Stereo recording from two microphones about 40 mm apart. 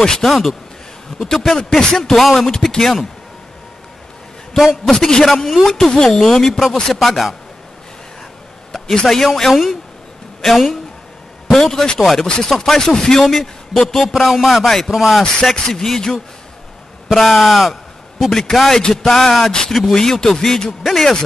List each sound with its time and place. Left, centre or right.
0.2 s speech: centre
1.6 s speech: centre
2.0 s speech: centre
4.6 s speech: centre
4.9 s speech: centre
6.5 s speech: centre
9.0 s speech: centre
12.0 s speech: centre
15.5 s speech: centre
17.1 s speech: centre
19.1 s speech: centre
20.8 s speech: centre